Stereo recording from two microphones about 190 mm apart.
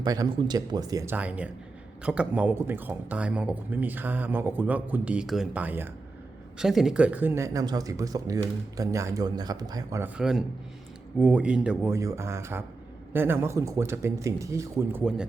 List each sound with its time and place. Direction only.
0.0 s speech: 20° right (ahead or behind)
10.2 s a man's voice: 5° right (ahead or behind)